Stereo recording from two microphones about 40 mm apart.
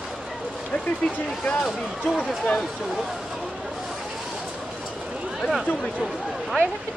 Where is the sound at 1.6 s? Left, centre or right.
Centre.